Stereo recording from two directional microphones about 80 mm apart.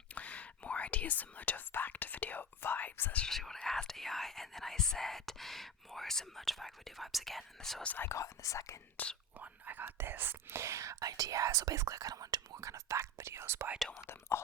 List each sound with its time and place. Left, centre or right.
0.1 s whispering: centre
3.2 s speech: centre
7.9 s speech: left
8.1 s speech: left
9.4 s speech: right
13.7 s speech: centre
14.1 s speech: left